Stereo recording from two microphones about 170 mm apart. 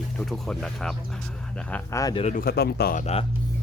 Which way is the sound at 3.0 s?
40° left (ahead or behind).